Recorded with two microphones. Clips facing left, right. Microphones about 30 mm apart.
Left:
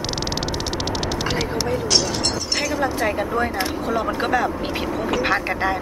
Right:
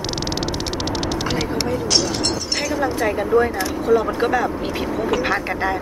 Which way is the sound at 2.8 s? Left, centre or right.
Centre.